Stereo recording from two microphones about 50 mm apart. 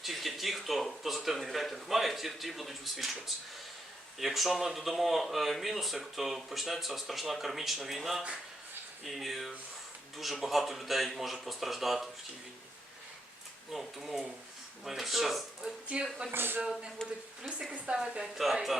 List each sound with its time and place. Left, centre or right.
0.0 s a sound: centre
4.2 s speech: centre
13.7 s speech: centre
15.9 s speech: right
16.3 s speech: right
17.0 s speech: centre
17.7 s a woman's voice: centre